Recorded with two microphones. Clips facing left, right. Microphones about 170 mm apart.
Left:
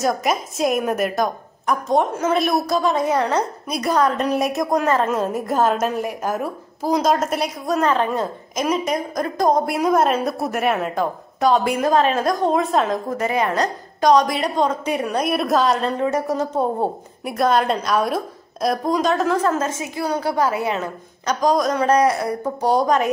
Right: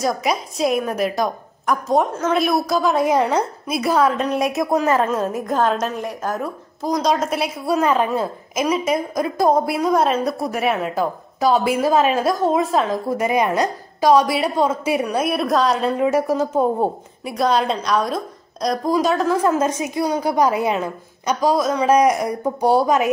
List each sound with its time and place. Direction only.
0.0 s a woman's voice: centre (ahead or behind); by 20.8 s 15° right (ahead or behind)
21.3 s a woman's voice: 5° right (ahead or behind)